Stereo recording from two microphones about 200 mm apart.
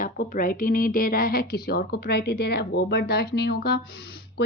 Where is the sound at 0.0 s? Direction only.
45° left (ahead or behind).